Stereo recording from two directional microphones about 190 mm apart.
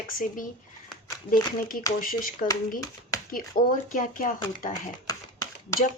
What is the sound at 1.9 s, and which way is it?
Speech, 45° left (ahead or behind).